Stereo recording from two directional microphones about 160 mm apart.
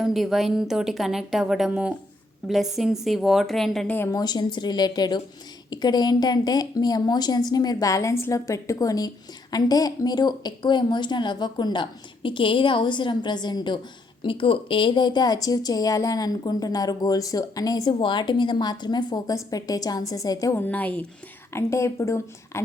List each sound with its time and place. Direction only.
0.0 s speech: centre (ahead or behind)
4.2 s a woman's voice: 25° left (ahead or behind)